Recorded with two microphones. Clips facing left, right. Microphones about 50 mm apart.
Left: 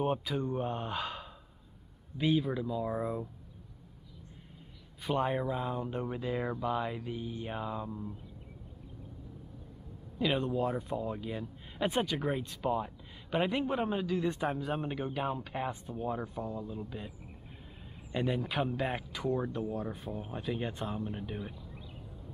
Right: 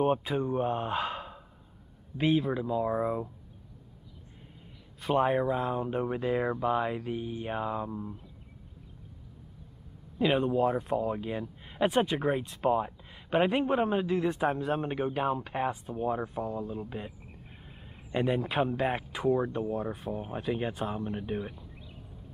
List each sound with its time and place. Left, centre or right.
0.4 s speech: right
2.5 s speech: right
5.1 s speech: centre
10.1 s speech: centre
18.1 s speech: centre
20.2 s speech: right